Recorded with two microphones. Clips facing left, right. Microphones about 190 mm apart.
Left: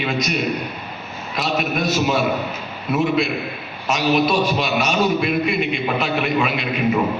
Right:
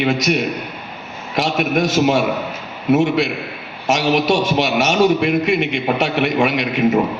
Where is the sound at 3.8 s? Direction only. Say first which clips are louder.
Right 2 dB; 85° right.